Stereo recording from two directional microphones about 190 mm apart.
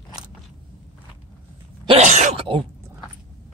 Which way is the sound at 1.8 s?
30° right (ahead or behind).